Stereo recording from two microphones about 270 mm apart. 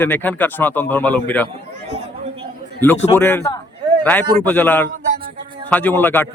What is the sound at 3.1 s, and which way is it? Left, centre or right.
Speech, centre.